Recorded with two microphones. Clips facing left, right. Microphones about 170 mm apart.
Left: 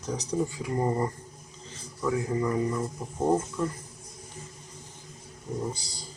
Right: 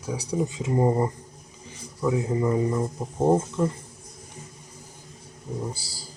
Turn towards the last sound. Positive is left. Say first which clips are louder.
# even
turn(degrees=-5)  # may be behind; listen again after turning